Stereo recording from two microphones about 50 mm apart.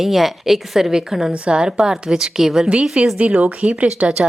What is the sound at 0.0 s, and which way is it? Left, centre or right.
A woman's voice, centre.